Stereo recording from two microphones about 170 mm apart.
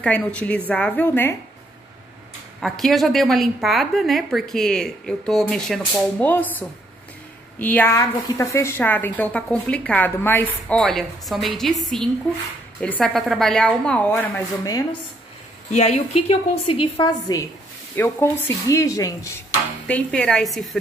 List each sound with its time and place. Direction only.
0.0 s a woman's voice: 5° left (ahead or behind)
2.6 s a woman's voice: centre (ahead or behind); by 15.0 s 20° left (ahead or behind)
15.7 s a woman's voice: 40° left (ahead or behind); by 17.5 s 25° left (ahead or behind)
17.9 s a woman's voice: 15° left (ahead or behind)
19.9 s a woman's voice: 5° left (ahead or behind)